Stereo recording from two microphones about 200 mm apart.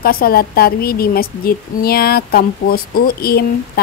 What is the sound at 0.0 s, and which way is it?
A woman's voice, 50° left (ahead or behind).